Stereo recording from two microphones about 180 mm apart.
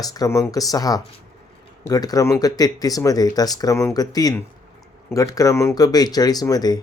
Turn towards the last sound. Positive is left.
turn(degrees=20)  # may be behind; listen again after turning